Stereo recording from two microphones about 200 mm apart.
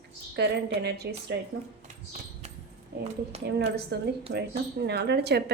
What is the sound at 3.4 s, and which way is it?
A woman's voice, 55° right (ahead or behind).